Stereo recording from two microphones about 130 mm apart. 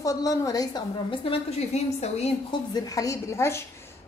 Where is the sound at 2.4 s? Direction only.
30° left (ahead or behind).